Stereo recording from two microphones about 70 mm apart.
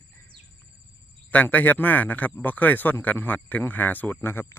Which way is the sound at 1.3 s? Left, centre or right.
Left.